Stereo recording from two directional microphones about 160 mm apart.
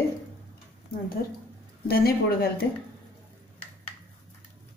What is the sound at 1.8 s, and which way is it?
Speech, 70° left (ahead or behind).